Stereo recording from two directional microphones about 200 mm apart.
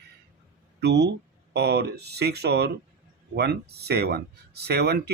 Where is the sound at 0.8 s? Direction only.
55° right (ahead or behind).